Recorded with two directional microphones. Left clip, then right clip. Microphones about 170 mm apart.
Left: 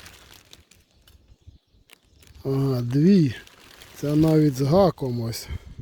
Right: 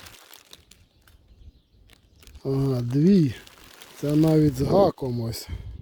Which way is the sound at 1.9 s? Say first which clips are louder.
Left 4 dB; 35° left (ahead or behind).